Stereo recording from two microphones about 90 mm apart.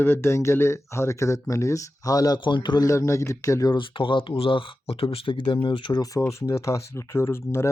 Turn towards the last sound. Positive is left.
turn(degrees=25)  # may be behind; listen again after turning